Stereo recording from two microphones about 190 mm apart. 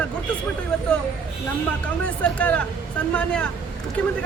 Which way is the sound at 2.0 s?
10° left (ahead or behind).